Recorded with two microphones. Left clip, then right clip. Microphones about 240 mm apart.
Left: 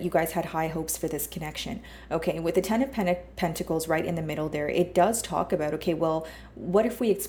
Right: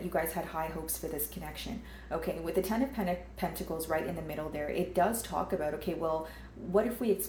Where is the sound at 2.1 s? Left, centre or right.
Left.